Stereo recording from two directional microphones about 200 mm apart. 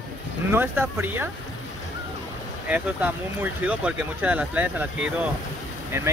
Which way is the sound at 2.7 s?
10° right (ahead or behind).